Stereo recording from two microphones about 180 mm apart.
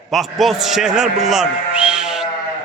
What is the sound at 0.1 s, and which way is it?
A man's voice, centre (ahead or behind).